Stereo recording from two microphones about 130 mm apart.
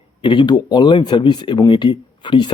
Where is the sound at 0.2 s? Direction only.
35° left (ahead or behind).